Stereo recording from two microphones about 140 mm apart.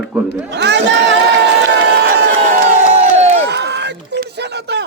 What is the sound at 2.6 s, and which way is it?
Crowd, 55° right (ahead or behind).